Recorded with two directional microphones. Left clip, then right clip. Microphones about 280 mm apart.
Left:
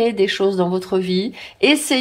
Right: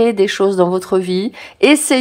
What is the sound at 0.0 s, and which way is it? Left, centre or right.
Speech, centre.